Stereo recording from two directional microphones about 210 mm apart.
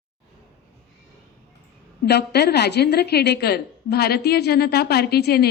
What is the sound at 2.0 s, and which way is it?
A woman's voice, 50° left (ahead or behind).